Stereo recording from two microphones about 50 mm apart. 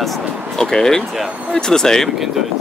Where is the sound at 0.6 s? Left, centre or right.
Centre.